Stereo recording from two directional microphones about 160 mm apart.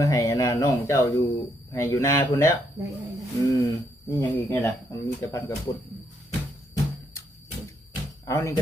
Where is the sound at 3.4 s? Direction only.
20° left (ahead or behind).